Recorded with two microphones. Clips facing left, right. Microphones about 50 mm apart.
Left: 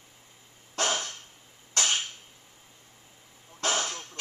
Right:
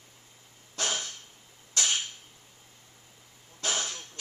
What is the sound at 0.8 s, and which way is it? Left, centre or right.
Dog, left.